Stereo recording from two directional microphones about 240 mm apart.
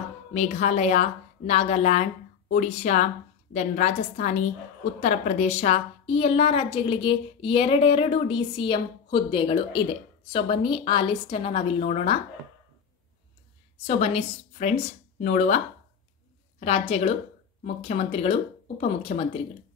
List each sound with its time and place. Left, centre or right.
0.3 s a woman's voice: left
13.8 s a woman's voice: left